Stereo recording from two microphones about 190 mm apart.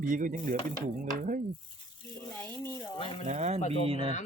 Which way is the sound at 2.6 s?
20° left (ahead or behind).